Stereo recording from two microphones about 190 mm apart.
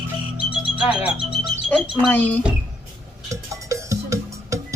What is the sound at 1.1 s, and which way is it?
Bird, 25° right (ahead or behind).